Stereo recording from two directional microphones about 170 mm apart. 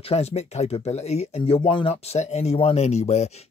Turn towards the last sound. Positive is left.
turn(degrees=40)  # may be behind; listen again after turning